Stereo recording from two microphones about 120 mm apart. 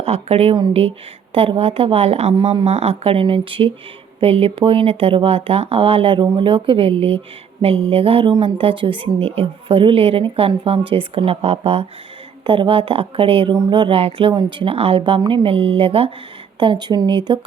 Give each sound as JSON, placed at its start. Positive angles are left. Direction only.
{"t": 0.0, "sound": "a woman's voice", "side_deg": -60}
{"t": 13.5, "sound": "a woman's voice", "side_deg": -35}
{"t": 16.6, "sound": "speech", "side_deg": -40}